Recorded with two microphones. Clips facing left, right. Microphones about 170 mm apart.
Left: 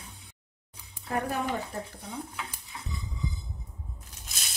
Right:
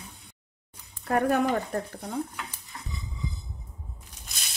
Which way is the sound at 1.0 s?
60° right (ahead or behind).